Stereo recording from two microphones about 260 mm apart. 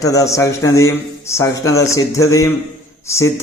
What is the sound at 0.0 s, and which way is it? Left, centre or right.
A man's voice, centre.